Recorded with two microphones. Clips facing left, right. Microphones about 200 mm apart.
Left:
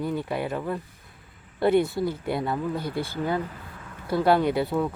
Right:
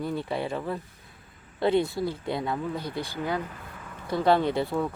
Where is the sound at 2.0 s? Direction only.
25° right (ahead or behind).